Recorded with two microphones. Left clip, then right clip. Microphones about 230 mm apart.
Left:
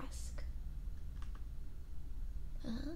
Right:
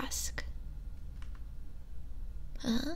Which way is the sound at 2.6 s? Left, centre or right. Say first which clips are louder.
Right 11 dB; right.